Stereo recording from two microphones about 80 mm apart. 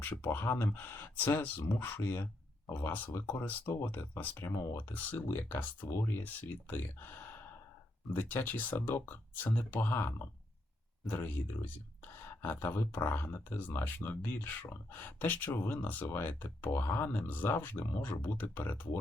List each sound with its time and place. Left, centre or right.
0.0 s speech: left